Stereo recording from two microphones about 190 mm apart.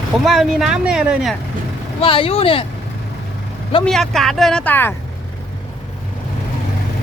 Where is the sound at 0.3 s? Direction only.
Centre (ahead or behind).